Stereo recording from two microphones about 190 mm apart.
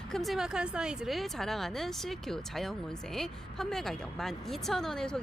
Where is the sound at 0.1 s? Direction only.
Centre (ahead or behind).